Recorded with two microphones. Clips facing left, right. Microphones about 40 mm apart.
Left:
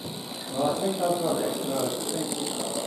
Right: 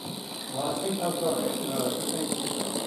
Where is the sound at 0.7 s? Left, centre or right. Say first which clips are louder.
Left 3 dB; centre.